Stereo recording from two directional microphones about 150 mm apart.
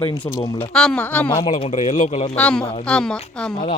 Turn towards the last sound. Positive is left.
turn(degrees=5)  # may be behind; listen again after turning